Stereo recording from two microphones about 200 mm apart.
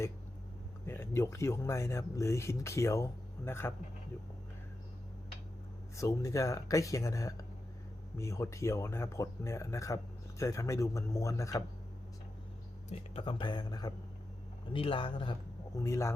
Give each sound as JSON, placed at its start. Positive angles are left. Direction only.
{"t": 0.9, "sound": "speech", "side_deg": 15}
{"t": 6.0, "sound": "speech", "side_deg": 15}
{"t": 12.9, "sound": "speech", "side_deg": 25}